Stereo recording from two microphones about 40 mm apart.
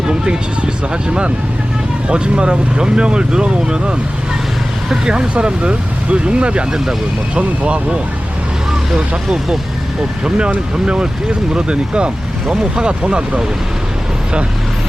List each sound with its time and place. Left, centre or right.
0.1 s speech: right
2.0 s speech: right